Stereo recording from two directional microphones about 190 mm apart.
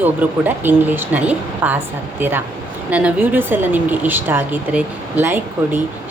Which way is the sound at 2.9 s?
10° right (ahead or behind).